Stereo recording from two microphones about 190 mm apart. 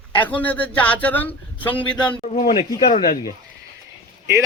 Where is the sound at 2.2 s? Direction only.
35° left (ahead or behind).